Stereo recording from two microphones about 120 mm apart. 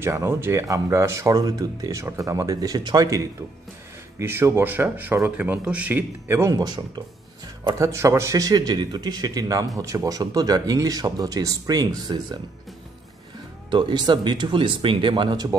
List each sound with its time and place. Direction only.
0.0 s speech: 20° right (ahead or behind)
4.2 s speech: 20° right (ahead or behind); by 12.4 s 35° right (ahead or behind)
13.7 s speech: 40° right (ahead or behind)